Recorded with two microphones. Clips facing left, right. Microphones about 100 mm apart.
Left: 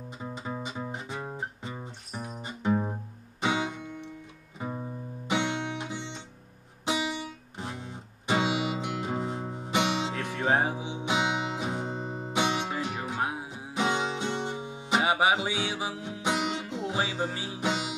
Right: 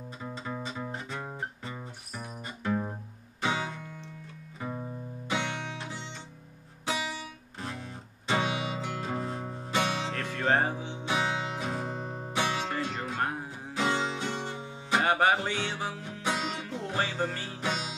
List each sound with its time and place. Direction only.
0.2 s music: 20° left (ahead or behind)
13.5 s music: 20° left (ahead or behind)